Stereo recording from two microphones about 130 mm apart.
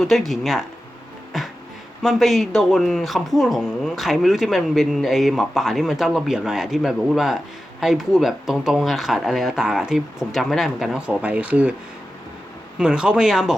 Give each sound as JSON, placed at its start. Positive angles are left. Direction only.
{"t": 0.0, "sound": "speech", "side_deg": 0}
{"t": 1.3, "sound": "a sound", "side_deg": 0}
{"t": 2.0, "sound": "speech", "side_deg": 0}
{"t": 12.8, "sound": "speech", "side_deg": -5}